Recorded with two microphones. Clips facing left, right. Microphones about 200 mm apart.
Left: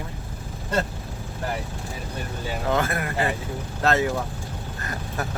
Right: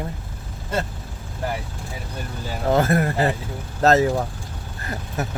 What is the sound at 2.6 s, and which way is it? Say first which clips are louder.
Speech: right 6 dB; 35° right (ahead or behind).